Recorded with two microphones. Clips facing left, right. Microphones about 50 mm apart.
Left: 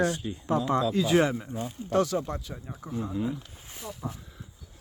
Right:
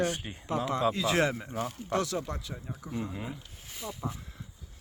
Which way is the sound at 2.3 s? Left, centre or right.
Left.